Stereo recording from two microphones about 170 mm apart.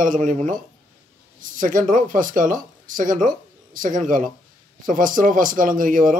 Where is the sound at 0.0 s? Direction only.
50° right (ahead or behind).